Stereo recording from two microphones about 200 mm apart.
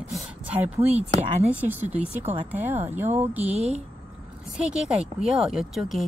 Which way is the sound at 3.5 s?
30° right (ahead or behind).